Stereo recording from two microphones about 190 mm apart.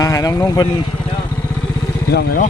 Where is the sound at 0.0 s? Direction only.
15° left (ahead or behind).